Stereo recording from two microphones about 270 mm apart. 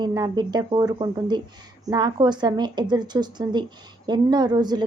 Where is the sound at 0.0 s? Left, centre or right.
Centre.